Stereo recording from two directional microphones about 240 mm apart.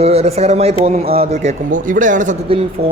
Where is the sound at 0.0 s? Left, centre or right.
Right.